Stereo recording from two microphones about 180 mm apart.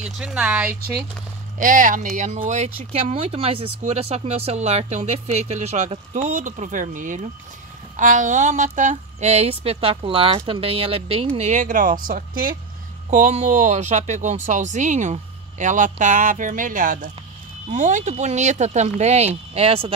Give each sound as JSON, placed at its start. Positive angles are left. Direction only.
{"t": 0.0, "sound": "speech", "side_deg": -5}
{"t": 1.6, "sound": "speech", "side_deg": -45}
{"t": 13.1, "sound": "speech", "side_deg": -40}